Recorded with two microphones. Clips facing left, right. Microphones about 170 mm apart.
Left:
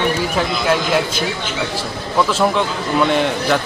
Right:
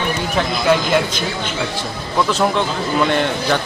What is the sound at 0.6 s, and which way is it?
A man's voice, 5° left (ahead or behind).